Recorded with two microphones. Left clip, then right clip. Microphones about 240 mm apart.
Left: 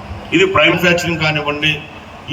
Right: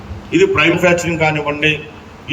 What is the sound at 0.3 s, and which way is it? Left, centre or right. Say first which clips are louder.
Speech: left 1 dB; left.